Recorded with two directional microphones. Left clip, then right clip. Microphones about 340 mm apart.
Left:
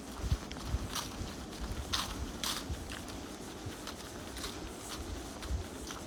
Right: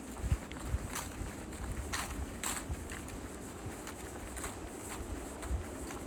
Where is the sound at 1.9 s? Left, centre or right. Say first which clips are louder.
Left 4 dB; centre.